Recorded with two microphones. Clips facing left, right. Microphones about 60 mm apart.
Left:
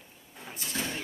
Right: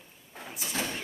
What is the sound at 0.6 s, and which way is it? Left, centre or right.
Speech, right.